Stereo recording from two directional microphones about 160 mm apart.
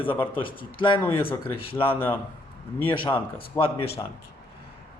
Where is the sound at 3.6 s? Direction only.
15° left (ahead or behind).